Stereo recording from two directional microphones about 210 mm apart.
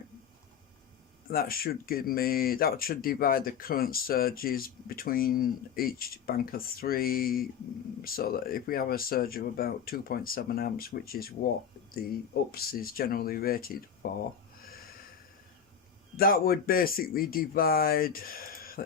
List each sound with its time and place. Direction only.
1.3 s speech: 45° left (ahead or behind)
16.1 s speech: 45° left (ahead or behind)